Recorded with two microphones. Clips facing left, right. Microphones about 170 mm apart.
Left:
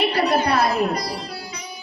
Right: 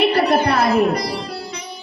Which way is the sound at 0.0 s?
55° right (ahead or behind).